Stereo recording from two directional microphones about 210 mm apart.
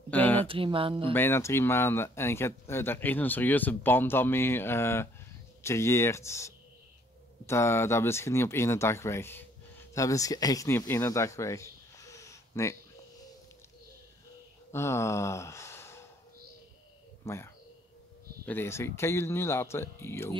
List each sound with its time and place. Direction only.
0.1 s a sound: 10° left (ahead or behind)
0.5 s speech: 25° right (ahead or behind)
1.1 s speech: 10° left (ahead or behind)
14.7 s speech: 15° left (ahead or behind)
17.2 s speech: 15° left (ahead or behind)